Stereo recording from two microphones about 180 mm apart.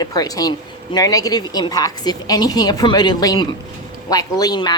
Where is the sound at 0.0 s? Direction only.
20° left (ahead or behind).